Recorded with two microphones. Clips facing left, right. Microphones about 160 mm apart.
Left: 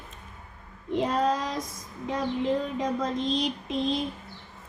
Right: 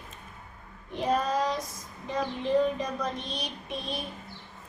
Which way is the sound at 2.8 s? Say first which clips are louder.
Left 5 dB; 90° left.